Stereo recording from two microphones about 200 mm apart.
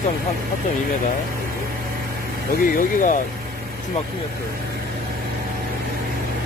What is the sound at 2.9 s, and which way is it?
Speech, 40° left (ahead or behind).